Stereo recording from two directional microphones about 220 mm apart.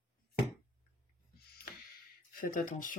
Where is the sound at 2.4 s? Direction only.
40° left (ahead or behind).